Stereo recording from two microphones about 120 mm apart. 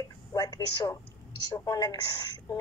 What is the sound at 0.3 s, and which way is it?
A woman's voice, 35° left (ahead or behind).